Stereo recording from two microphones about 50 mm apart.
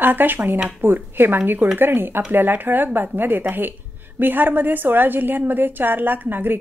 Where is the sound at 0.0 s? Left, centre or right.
Right.